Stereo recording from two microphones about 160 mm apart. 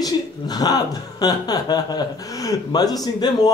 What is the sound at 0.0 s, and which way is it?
Speech, 25° left (ahead or behind).